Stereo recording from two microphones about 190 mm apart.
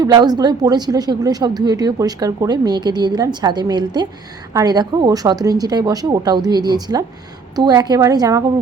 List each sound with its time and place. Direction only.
0.0 s a woman's voice: 20° right (ahead or behind)